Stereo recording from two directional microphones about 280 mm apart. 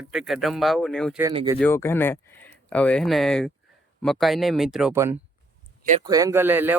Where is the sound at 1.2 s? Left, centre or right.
Centre.